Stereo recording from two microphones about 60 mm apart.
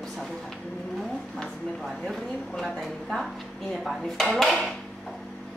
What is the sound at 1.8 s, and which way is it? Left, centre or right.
A woman's voice, centre.